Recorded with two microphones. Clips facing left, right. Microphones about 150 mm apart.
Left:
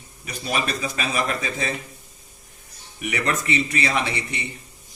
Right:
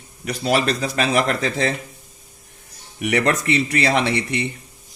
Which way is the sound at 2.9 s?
70° right (ahead or behind).